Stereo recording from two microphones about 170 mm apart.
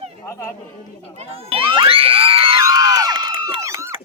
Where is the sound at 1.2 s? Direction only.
35° right (ahead or behind).